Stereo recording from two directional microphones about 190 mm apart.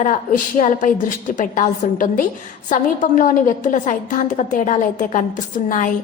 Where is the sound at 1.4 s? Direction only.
45° left (ahead or behind).